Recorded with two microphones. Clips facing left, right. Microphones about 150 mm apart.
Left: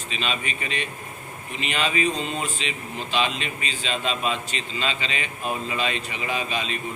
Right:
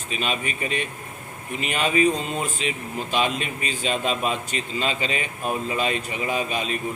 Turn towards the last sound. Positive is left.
turn(degrees=-50)  # may be behind; listen again after turning